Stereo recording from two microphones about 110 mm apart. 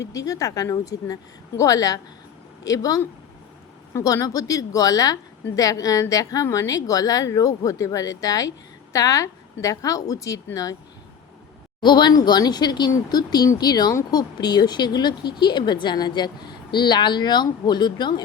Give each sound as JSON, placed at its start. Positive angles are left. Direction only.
{"t": 0.1, "sound": "speech", "side_deg": 30}
{"t": 11.8, "sound": "speech", "side_deg": 45}